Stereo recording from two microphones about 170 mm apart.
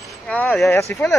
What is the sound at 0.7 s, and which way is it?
Speech, 15° left (ahead or behind).